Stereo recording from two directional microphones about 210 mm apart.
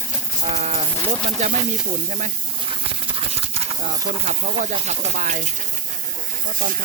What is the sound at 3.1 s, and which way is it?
Speech, 30° right (ahead or behind).